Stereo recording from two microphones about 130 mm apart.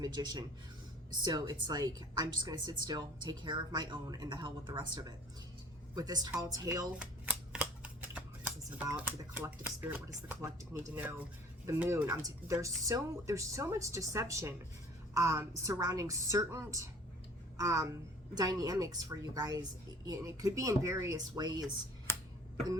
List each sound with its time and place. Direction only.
0.0 s speech: 35° right (ahead or behind)
7.0 s shuffling cards: 10° right (ahead or behind)
9.0 s speech: 10° right (ahead or behind); by 21.7 s 30° right (ahead or behind)
22.1 s a sound: 20° left (ahead or behind)